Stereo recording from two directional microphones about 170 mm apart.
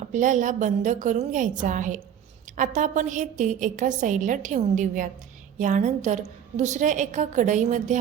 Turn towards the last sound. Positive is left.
turn(degrees=-45)  # may be behind; listen again after turning